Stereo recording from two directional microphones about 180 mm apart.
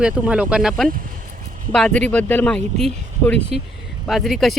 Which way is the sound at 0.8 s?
50° right (ahead or behind).